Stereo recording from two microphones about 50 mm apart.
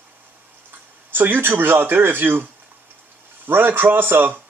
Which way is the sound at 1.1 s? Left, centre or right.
Right.